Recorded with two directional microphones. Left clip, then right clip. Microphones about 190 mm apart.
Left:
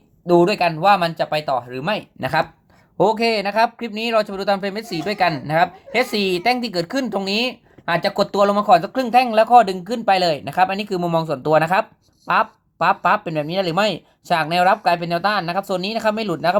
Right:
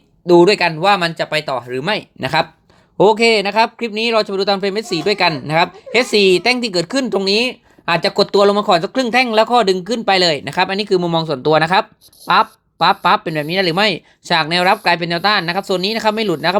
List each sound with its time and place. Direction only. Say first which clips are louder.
0.3 s speech: right 5 dB; 20° right (ahead or behind)
1.5 s speech: right 1 dB; 60° right (ahead or behind)
1.9 s speech: right 3 dB; 20° right (ahead or behind)
12.9 s speech: right 2 dB; 10° right (ahead or behind)